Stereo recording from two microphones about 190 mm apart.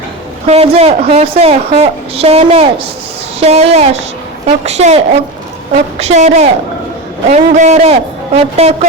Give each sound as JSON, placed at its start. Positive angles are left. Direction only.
{"t": 0.4, "sound": "a woman's voice", "side_deg": -30}